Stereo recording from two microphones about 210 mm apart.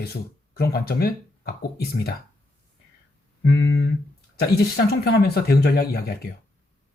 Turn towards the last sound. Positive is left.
turn(degrees=50)  # may be behind; listen again after turning